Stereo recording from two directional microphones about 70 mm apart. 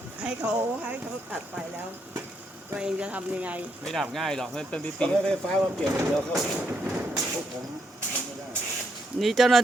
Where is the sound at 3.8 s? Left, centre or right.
Centre.